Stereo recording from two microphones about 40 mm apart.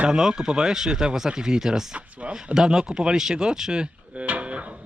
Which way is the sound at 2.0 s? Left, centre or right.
Right.